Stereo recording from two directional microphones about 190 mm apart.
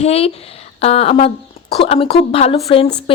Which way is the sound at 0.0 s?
35° left (ahead or behind).